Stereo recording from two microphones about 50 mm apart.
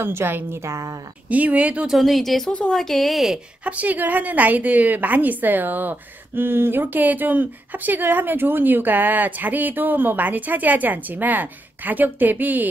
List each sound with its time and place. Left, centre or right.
0.0 s a woman's voice: right
0.5 s a woman's voice: right
1.3 s a woman's voice: right
1.9 s a woman's voice: centre
3.6 s a woman's voice: right